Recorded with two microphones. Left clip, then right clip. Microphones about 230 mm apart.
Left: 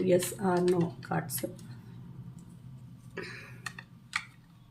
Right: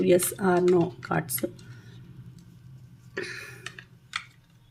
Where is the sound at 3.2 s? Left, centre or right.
Right.